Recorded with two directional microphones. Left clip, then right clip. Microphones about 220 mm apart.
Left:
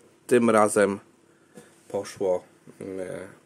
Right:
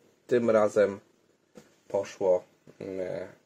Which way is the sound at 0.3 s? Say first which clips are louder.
Left 4 dB; 25° left (ahead or behind).